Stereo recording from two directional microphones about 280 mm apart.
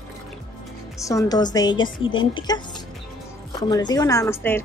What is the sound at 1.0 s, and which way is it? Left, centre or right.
A woman's voice, centre.